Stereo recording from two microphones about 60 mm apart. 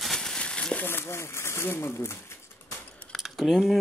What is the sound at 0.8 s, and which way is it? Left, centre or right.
Speech, left.